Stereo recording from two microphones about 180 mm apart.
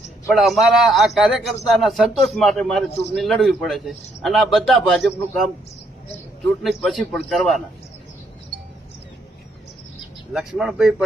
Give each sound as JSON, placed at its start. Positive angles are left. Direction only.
{"t": 0.3, "sound": "a man's voice", "side_deg": 0}
{"t": 6.6, "sound": "a man's voice", "side_deg": 0}
{"t": 10.3, "sound": "a man's voice", "side_deg": 0}